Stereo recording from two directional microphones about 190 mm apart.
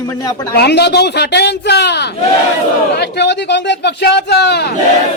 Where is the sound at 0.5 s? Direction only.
60° left (ahead or behind).